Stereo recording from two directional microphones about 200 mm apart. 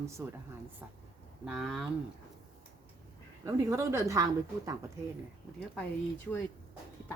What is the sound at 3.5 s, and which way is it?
Speech, 15° right (ahead or behind).